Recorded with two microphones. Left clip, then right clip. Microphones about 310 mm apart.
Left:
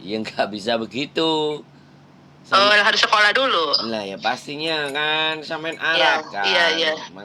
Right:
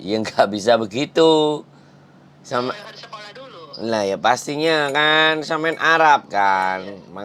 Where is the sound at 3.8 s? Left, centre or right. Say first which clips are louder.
Right 6 dB; right.